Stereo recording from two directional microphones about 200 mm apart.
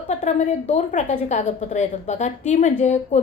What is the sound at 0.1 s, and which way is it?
A woman's voice, 35° left (ahead or behind).